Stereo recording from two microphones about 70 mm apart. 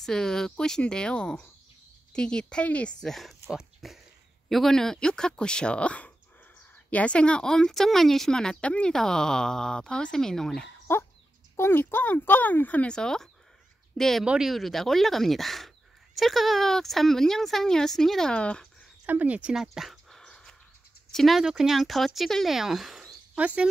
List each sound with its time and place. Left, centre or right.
0.0 s speech: centre
3.1 s speech: centre
10.9 s dog: left
11.5 s speech: left; by 14.2 s centre
14.2 s speech: centre
14.5 s speech: centre
19.0 s speech: right
19.5 s speech: centre
20.2 s a sound: centre
21.1 s speech: centre
23.3 s speech: centre